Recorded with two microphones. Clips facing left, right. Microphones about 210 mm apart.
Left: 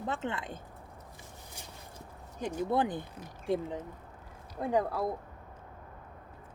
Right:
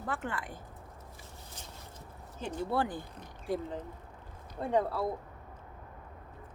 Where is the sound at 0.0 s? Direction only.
20° left (ahead or behind).